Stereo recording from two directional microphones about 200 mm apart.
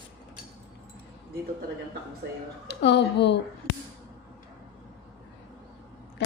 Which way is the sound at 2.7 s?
60° left (ahead or behind).